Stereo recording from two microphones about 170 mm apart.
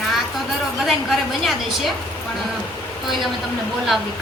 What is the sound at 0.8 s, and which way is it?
Speech, centre (ahead or behind).